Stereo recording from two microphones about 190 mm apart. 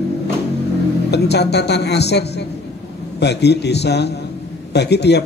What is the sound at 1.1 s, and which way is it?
A man's voice, 60° left (ahead or behind).